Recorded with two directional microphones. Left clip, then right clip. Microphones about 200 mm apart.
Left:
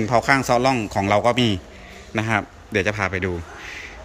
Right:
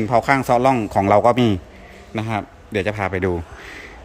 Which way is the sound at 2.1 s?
10° right (ahead or behind).